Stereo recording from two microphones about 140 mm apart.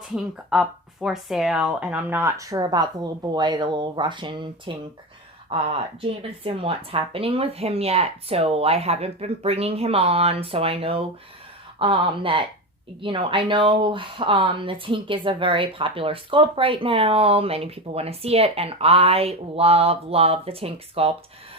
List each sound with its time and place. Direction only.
0.1 s speech: centre (ahead or behind); by 21.1 s 45° right (ahead or behind)